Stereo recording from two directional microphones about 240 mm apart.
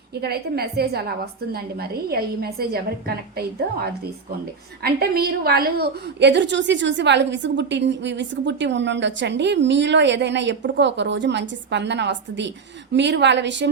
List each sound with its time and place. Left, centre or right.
0.2 s a woman's voice: right